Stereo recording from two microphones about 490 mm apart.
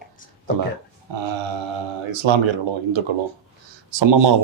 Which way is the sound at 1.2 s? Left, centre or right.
Right.